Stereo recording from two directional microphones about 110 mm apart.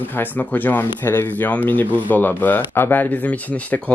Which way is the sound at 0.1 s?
15° left (ahead or behind).